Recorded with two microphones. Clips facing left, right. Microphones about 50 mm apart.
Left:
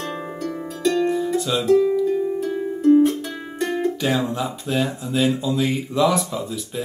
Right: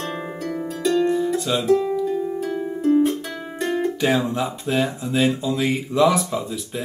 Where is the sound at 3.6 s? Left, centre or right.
Centre.